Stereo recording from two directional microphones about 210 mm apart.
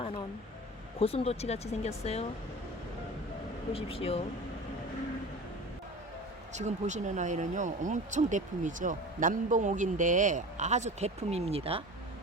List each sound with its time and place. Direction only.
0.9 s speech: 30° left (ahead or behind)
3.7 s speech: 25° left (ahead or behind)
6.5 s speech: 35° right (ahead or behind)